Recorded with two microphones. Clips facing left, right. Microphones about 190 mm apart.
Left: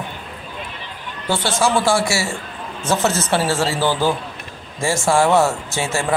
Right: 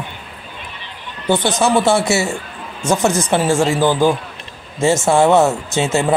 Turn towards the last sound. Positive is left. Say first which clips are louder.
# right 5 dB
turn(degrees=-20)  # may be behind; listen again after turning